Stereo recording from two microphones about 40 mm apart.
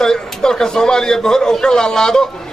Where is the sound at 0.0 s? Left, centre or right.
Centre.